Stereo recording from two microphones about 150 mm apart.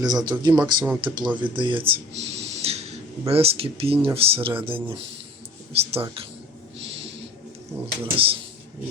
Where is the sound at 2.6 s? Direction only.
45° right (ahead or behind).